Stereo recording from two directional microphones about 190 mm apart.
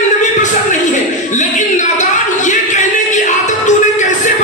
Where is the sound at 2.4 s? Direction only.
40° left (ahead or behind).